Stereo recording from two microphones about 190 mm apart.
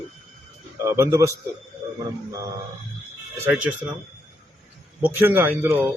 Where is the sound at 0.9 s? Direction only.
15° right (ahead or behind).